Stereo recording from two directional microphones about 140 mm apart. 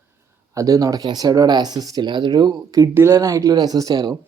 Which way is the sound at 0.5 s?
25° right (ahead or behind).